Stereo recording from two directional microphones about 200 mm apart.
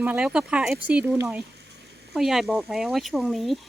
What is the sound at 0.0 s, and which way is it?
Speech, 5° right (ahead or behind).